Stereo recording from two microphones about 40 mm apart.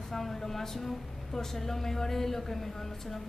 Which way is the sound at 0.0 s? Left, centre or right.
Centre.